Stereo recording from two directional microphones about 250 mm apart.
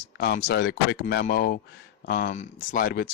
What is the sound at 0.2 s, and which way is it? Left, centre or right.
Speech, left.